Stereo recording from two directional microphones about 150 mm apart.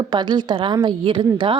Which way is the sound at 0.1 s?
30° right (ahead or behind).